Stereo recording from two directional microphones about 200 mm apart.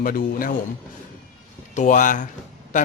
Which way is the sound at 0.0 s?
45° left (ahead or behind).